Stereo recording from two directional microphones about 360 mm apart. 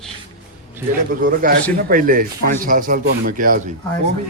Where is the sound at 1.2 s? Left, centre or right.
Right.